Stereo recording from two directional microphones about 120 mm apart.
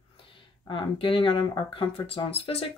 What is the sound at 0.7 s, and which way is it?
Speech, 45° left (ahead or behind).